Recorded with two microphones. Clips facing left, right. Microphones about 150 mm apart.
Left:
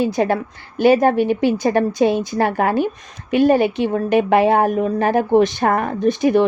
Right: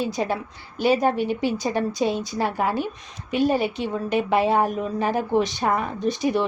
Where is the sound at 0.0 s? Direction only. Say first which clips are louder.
Left 7 dB; 60° left (ahead or behind).